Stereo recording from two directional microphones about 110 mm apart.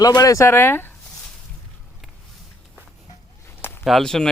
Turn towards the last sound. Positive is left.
turn(degrees=5)  # may be behind; listen again after turning